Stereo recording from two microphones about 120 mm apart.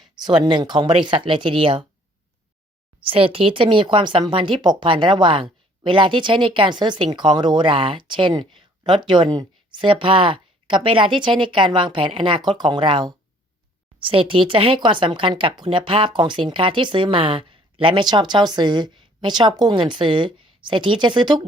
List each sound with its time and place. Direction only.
0.3 s speech: 40° right (ahead or behind)
3.0 s speech: 50° right (ahead or behind)